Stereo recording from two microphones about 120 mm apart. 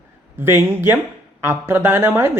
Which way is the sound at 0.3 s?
20° right (ahead or behind).